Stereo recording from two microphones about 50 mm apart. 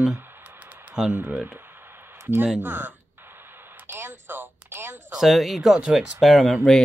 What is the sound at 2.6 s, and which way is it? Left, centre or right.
Speech, right.